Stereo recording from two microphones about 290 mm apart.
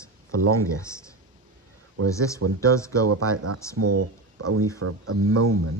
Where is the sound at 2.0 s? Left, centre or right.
Centre.